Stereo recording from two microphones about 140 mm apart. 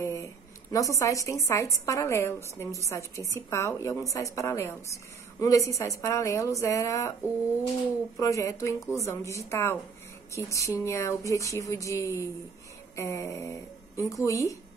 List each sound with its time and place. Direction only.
0.0 s a sound: 20° left (ahead or behind)
1.5 s a woman's voice: 20° left (ahead or behind)
8.2 s a woman's voice: 20° left (ahead or behind)